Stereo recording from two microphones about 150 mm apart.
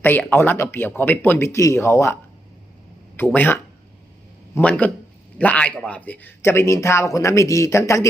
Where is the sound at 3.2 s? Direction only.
10° left (ahead or behind).